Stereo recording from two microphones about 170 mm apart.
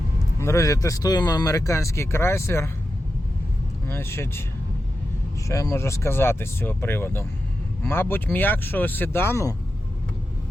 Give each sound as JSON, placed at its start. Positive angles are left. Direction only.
{"t": 0.3, "sound": "speech", "side_deg": 15}
{"t": 3.8, "sound": "speech", "side_deg": 15}
{"t": 5.5, "sound": "speech", "side_deg": 20}